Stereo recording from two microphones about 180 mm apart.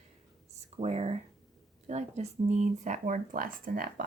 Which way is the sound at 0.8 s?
35° right (ahead or behind).